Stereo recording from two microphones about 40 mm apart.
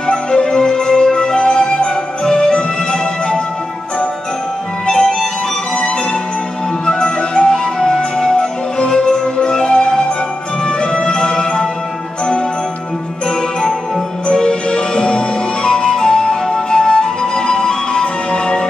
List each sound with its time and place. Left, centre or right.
0.0 s music: left
4.8 s music: centre
6.9 s music: left
13.6 s music: centre
14.2 s music: centre